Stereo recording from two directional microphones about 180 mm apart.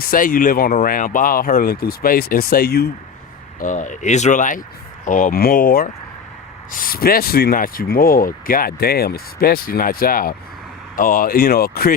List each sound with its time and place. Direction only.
0.0 s speech: 50° left (ahead or behind)
3.6 s speech: 45° left (ahead or behind)